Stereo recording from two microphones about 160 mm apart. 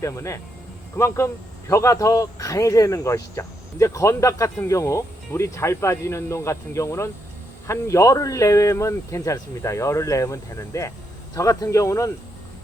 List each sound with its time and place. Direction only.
0.0 s speech: 20° left (ahead or behind)